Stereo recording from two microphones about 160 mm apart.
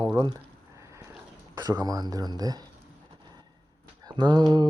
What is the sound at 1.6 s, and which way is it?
Speech, 25° right (ahead or behind).